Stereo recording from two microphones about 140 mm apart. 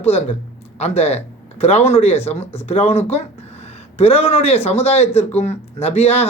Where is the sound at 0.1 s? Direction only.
50° left (ahead or behind).